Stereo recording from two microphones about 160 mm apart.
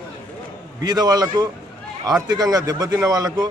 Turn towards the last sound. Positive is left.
turn(degrees=-25)  # may be behind; listen again after turning